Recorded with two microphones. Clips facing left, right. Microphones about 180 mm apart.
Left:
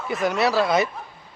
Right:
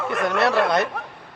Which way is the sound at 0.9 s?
70° right (ahead or behind).